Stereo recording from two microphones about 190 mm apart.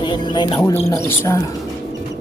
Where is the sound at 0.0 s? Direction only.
25° left (ahead or behind).